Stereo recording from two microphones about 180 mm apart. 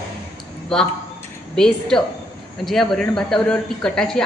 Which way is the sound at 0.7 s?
5° left (ahead or behind).